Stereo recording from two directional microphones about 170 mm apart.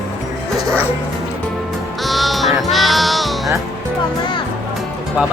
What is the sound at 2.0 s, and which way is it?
Music, centre (ahead or behind).